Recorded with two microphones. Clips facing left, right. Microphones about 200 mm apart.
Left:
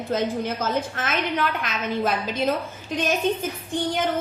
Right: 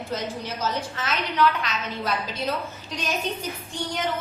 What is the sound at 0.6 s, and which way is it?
A woman's voice, 50° left (ahead or behind).